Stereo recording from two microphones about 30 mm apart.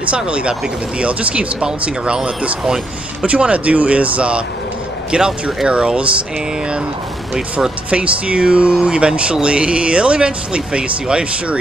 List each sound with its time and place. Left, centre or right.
0.0 s speech: right
2.6 s speech: right
3.3 s speech: right
7.9 s speech: right